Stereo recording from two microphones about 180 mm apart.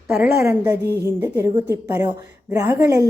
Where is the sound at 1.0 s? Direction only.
15° right (ahead or behind).